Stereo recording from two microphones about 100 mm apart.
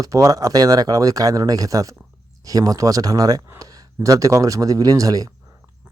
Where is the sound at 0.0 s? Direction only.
35° right (ahead or behind).